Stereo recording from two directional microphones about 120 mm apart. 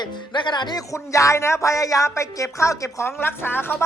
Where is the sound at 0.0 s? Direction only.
40° left (ahead or behind).